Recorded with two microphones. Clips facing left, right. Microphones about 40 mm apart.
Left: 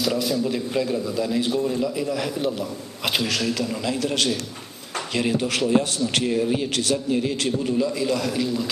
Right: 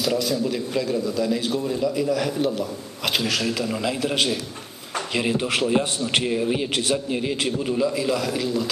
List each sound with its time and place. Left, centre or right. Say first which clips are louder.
0.0 s a man's voice: even; centre
4.9 s a sound: even; centre
5.4 s a man's voice: left 1 dB; centre